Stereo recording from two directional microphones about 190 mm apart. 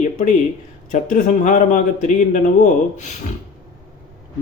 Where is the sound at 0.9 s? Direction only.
40° left (ahead or behind).